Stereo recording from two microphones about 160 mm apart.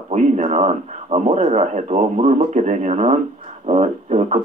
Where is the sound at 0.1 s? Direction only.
45° right (ahead or behind).